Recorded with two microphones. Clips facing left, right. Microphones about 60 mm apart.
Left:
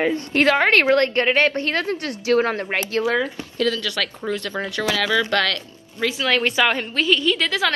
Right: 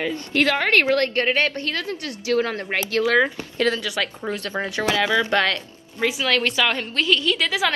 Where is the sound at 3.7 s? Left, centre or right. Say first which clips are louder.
Even; centre.